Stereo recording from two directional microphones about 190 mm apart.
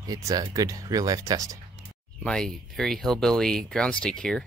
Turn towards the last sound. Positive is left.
turn(degrees=5)  # may be behind; listen again after turning